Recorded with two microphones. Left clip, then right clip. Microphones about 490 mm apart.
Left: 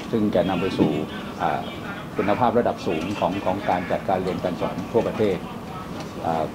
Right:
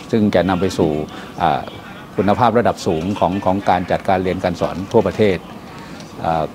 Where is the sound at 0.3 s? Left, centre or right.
Right.